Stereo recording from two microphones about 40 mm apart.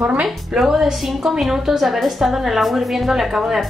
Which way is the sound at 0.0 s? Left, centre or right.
Right.